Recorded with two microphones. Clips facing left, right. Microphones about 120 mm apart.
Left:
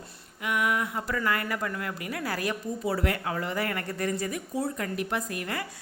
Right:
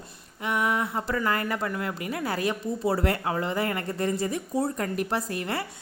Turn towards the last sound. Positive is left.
turn(degrees=-30)  # may be behind; listen again after turning